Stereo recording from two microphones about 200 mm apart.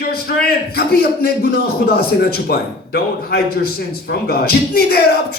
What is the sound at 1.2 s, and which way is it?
A man's voice, 50° left (ahead or behind).